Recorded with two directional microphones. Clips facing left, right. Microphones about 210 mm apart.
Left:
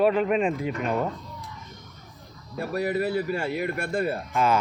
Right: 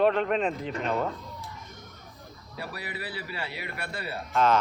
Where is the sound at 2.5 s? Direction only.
45° left (ahead or behind).